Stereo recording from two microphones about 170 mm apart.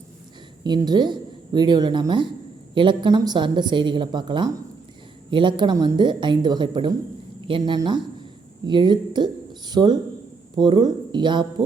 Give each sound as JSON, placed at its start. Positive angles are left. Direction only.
{"t": 0.6, "sound": "a woman's voice", "side_deg": -25}